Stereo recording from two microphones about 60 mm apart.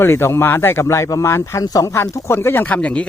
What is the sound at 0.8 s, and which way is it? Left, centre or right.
Speech, left.